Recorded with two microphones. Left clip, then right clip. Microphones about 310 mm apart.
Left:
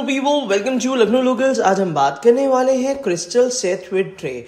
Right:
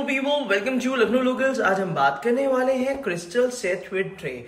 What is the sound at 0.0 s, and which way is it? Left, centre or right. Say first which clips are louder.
A man's voice: left 5 dB; centre.